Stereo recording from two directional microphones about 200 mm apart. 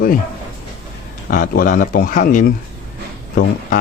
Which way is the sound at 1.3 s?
45° left (ahead or behind).